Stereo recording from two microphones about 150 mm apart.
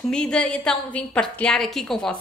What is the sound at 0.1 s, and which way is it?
A woman's voice, 5° left (ahead or behind).